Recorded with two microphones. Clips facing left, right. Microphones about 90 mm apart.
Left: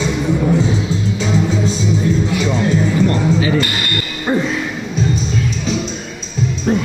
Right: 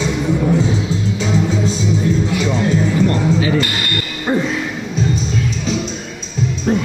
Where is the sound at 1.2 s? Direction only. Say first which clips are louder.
Even; 15° left (ahead or behind).